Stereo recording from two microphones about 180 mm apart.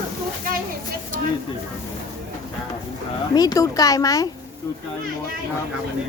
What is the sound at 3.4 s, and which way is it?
Speech, 20° left (ahead or behind).